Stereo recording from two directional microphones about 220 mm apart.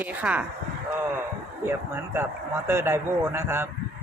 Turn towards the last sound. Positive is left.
turn(degrees=-10)  # may be behind; listen again after turning